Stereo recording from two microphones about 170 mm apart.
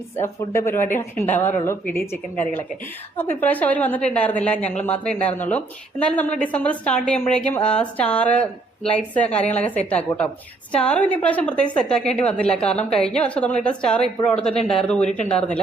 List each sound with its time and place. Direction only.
0.2 s a woman's voice: 15° left (ahead or behind)
14.5 s speech: 35° left (ahead or behind)
14.8 s speech: 5° left (ahead or behind)